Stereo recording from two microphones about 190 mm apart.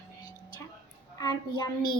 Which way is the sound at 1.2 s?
20° left (ahead or behind).